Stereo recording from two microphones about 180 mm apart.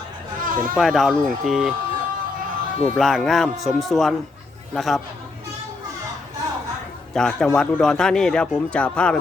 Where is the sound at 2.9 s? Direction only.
Centre (ahead or behind).